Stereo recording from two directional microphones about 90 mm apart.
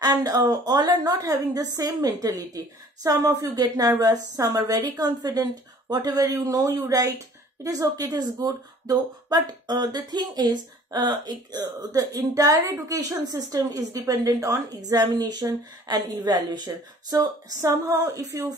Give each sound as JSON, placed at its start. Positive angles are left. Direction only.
{"t": 0.0, "sound": "a woman's voice", "side_deg": -45}